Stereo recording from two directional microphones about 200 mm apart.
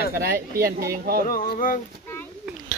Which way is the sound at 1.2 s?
40° left (ahead or behind).